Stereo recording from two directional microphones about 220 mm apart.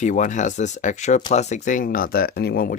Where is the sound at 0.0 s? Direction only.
35° left (ahead or behind).